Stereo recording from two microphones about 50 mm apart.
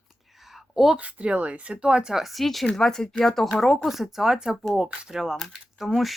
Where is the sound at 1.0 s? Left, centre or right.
Right; by 6.1 s centre.